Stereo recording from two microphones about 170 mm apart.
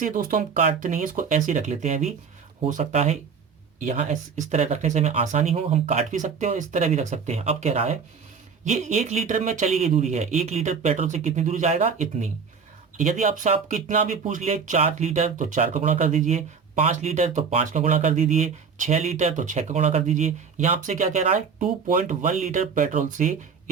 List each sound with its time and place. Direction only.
0.0 s speech: 55° right (ahead or behind)